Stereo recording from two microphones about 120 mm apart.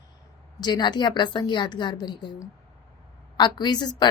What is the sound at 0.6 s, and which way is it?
A woman's voice, 35° left (ahead or behind).